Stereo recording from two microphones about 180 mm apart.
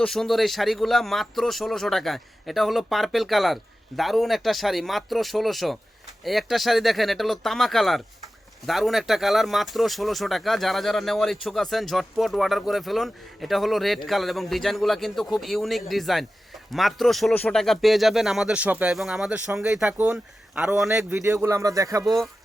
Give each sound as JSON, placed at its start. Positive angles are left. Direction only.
{"t": 0.0, "sound": "speech", "side_deg": 0}
{"t": 21.2, "sound": "speech", "side_deg": -15}
{"t": 22.0, "sound": "speech", "side_deg": 0}